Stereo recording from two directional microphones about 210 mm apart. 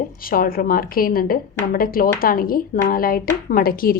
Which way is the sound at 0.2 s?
45° left (ahead or behind).